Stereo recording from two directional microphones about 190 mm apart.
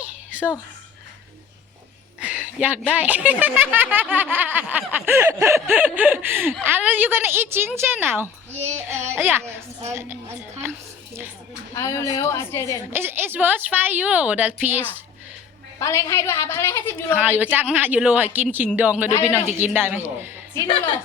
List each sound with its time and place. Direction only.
0.3 s a sound: 5° right (ahead or behind)
2.2 s speech: 5° right (ahead or behind)
10.6 s a sound: 10° right (ahead or behind)
11.7 s a woman's voice: 15° left (ahead or behind)
12.9 s speech: 10° right (ahead or behind)
15.8 s a woman's voice: 15° left (ahead or behind)
17.2 s speech: 10° right (ahead or behind)
20.6 s speech: 25° left (ahead or behind)